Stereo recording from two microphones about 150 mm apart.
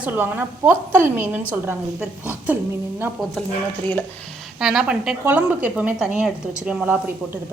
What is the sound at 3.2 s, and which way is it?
Speech, centre (ahead or behind).